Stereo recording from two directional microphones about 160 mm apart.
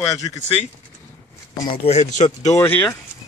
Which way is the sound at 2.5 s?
10° left (ahead or behind).